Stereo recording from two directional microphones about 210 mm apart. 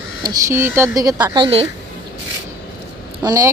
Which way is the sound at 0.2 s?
15° right (ahead or behind).